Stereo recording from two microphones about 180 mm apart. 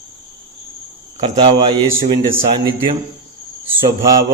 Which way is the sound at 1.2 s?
25° right (ahead or behind).